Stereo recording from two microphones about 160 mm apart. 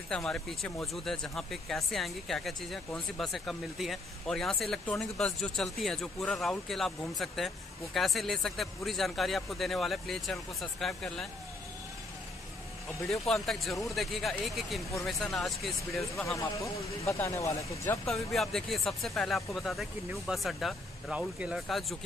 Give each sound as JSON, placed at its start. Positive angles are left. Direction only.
{"t": 0.1, "sound": "speech", "side_deg": 5}
{"t": 13.1, "sound": "speech", "side_deg": 0}
{"t": 16.3, "sound": "speech", "side_deg": 20}
{"t": 18.0, "sound": "speech", "side_deg": 0}